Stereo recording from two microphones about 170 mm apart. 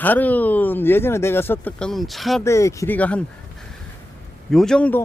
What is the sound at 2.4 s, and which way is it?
Speech, 15° left (ahead or behind).